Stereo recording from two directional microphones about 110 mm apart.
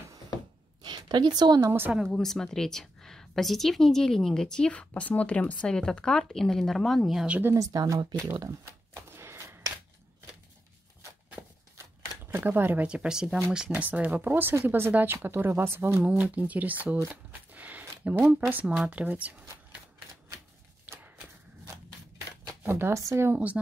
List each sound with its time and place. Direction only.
0.8 s a woman's voice: 40° right (ahead or behind)
1.9 s a woman's voice: 5° right (ahead or behind)
7.5 s shuffling cards: 35° right (ahead or behind)
12.3 s speech: 20° right (ahead or behind)
16.0 s speech: 10° right (ahead or behind)
17.1 s a sound: 15° right (ahead or behind)
18.3 s speech: 15° right (ahead or behind)
22.6 s speech: 20° right (ahead or behind)